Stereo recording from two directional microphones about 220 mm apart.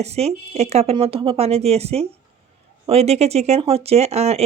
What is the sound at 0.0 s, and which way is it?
Speech, 30° right (ahead or behind).